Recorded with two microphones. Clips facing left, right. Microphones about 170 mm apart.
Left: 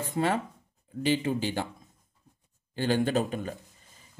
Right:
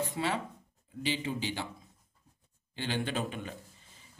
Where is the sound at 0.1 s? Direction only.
45° left (ahead or behind).